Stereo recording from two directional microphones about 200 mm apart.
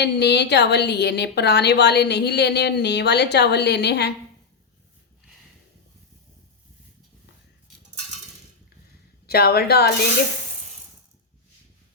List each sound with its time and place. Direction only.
0.0 s a woman's voice: 55° left (ahead or behind)
9.2 s speech: 50° left (ahead or behind)